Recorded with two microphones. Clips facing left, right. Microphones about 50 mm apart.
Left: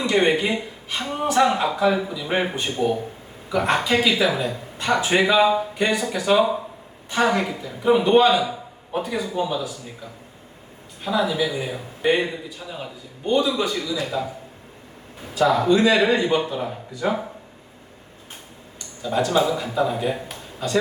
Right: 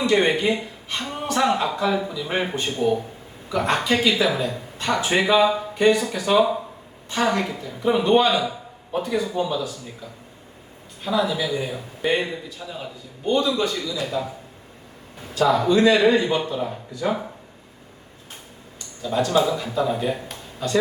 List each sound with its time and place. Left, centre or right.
0.1 s a man's voice: centre
11.0 s a man's voice: centre
15.4 s a man's voice: centre
19.0 s speech: centre